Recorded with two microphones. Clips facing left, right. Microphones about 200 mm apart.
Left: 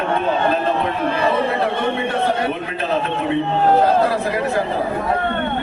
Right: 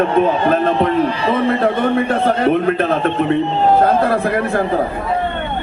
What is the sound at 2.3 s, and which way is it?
A man's voice, 55° right (ahead or behind).